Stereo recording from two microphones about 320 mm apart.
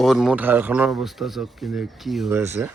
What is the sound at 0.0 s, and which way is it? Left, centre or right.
Speech, centre.